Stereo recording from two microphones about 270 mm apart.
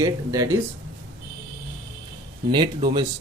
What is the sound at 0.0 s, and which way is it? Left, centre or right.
Speech, centre.